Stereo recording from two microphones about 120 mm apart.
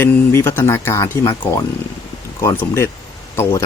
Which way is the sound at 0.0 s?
20° left (ahead or behind).